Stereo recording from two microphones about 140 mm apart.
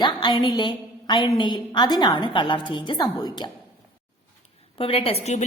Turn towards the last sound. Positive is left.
turn(degrees=55)  # may be behind; listen again after turning